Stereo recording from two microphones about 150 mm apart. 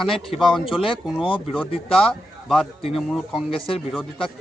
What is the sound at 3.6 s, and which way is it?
Speech, 40° left (ahead or behind).